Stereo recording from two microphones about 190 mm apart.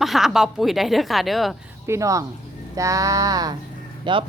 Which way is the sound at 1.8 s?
15° right (ahead or behind).